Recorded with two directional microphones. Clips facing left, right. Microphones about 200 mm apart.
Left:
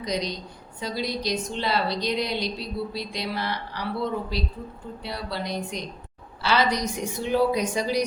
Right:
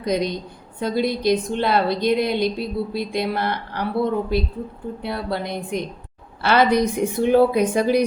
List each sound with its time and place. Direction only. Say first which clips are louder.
0.0 s a woman's voice: right 6 dB; 55° right (ahead or behind)